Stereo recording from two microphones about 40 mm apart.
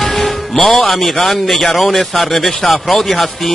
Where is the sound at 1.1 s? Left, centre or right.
Centre.